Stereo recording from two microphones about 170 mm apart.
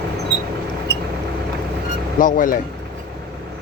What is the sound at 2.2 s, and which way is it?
Speech, 50° left (ahead or behind).